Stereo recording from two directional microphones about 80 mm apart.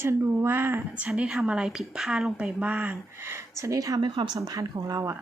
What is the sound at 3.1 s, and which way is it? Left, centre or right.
Speech, right.